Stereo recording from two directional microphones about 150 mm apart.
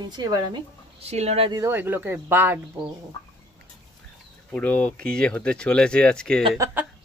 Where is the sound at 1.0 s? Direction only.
45° right (ahead or behind).